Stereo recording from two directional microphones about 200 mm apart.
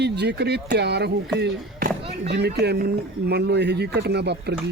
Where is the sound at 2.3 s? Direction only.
55° right (ahead or behind).